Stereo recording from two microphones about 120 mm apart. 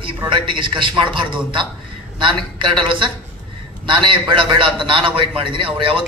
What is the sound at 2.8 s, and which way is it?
A man's voice, 40° right (ahead or behind).